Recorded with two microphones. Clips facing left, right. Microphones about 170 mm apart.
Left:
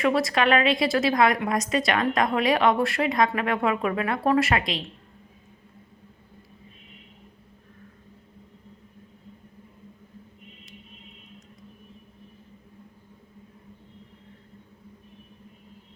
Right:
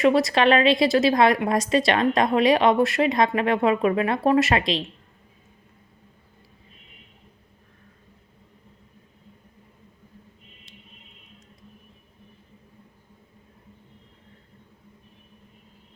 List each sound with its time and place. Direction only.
0.0 s a woman's voice: 25° right (ahead or behind)